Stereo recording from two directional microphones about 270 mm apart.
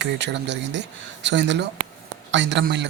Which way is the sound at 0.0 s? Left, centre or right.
Right.